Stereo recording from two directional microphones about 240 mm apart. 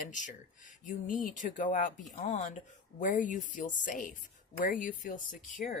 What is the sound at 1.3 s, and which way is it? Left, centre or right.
Speech, left.